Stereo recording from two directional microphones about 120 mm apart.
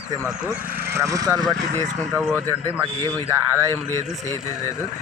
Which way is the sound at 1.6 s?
90° right.